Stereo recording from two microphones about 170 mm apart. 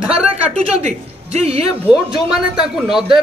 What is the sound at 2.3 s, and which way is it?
Speech, centre (ahead or behind).